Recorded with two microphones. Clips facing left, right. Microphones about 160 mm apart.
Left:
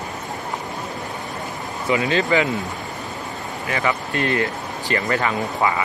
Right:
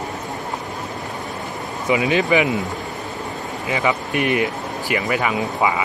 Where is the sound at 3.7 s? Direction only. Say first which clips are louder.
Right 2 dB; 15° right (ahead or behind).